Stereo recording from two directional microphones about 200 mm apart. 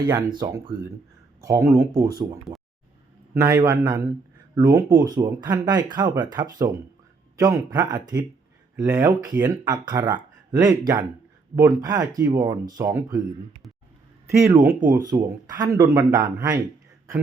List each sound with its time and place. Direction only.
0.3 s speech: 20° right (ahead or behind)
2.5 s a sound: 20° right (ahead or behind)
3.3 s speech: 15° right (ahead or behind)
14.4 s speech: 15° right (ahead or behind)